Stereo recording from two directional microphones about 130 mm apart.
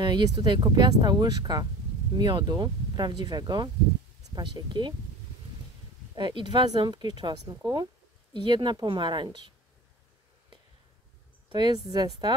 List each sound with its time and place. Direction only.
0.0 s speech: 35° right (ahead or behind)
6.1 s speech: 40° right (ahead or behind)
11.4 s speech: 40° right (ahead or behind)